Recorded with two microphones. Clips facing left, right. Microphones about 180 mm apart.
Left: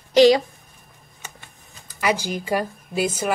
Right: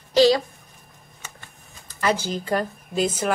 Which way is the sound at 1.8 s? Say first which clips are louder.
Even; 10° left (ahead or behind).